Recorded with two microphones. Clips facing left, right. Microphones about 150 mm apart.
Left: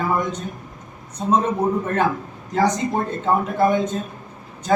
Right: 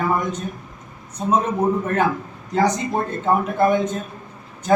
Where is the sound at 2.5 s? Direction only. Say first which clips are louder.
Even; centre (ahead or behind).